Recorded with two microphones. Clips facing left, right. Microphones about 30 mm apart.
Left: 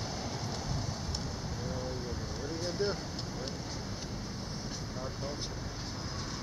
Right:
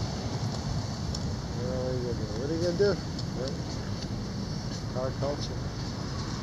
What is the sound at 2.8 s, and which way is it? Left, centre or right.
Speech, centre.